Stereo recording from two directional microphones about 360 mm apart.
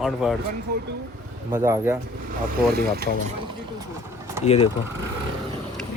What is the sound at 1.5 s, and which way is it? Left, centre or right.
Speech, centre.